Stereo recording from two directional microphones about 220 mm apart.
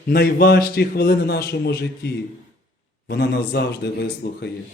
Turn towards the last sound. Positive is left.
turn(degrees=45)  # may be behind; listen again after turning